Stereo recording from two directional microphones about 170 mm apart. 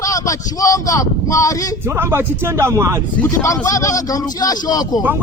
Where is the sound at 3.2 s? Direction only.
20° left (ahead or behind).